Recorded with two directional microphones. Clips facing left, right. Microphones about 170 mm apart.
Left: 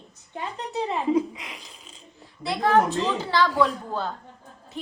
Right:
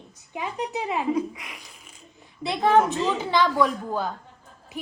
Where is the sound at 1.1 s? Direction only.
20° left (ahead or behind).